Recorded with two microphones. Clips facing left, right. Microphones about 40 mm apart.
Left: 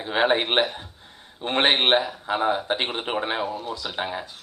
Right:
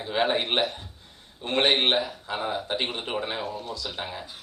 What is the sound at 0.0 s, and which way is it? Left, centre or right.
Speech, left.